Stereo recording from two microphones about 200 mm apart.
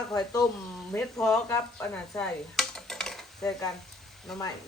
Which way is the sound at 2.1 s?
5° left (ahead or behind).